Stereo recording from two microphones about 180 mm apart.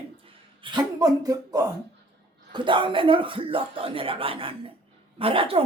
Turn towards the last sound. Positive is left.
turn(degrees=-30)  # may be behind; listen again after turning